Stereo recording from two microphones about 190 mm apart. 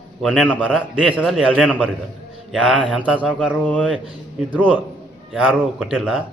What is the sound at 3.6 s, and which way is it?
Speech, 10° left (ahead or behind).